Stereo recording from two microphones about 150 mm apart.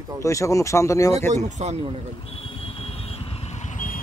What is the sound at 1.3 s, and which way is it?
Speech, 50° right (ahead or behind).